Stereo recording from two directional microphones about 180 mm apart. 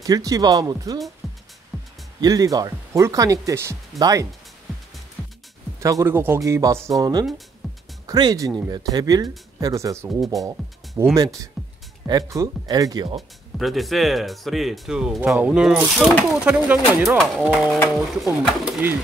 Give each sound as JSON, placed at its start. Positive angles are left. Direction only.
{"t": 0.0, "sound": "speech", "side_deg": -20}
{"t": 1.2, "sound": "music", "side_deg": 0}
{"t": 2.2, "sound": "speech", "side_deg": -20}
{"t": 5.8, "sound": "speech", "side_deg": -15}
{"t": 11.6, "sound": "music", "side_deg": 0}
{"t": 12.1, "sound": "speech", "side_deg": -20}
{"t": 13.6, "sound": "speech", "side_deg": 0}